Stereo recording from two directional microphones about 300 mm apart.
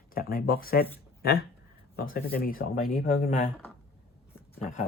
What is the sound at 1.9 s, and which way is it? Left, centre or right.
Speech, left.